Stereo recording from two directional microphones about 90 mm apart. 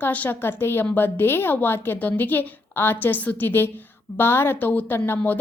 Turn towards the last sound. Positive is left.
turn(degrees=20)  # may be behind; listen again after turning